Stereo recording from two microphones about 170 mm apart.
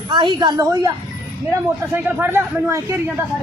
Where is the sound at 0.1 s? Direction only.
25° right (ahead or behind).